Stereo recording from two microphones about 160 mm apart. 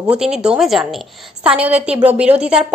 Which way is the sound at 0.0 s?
5° right (ahead or behind).